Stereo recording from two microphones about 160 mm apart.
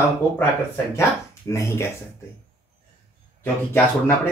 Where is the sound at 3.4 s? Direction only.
15° left (ahead or behind).